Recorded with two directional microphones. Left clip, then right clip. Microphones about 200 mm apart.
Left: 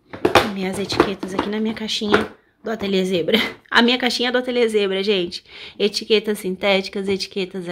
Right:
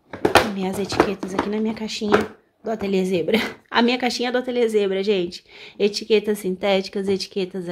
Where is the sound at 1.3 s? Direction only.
Centre (ahead or behind).